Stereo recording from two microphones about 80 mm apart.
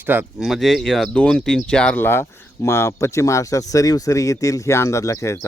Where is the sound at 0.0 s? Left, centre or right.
Right.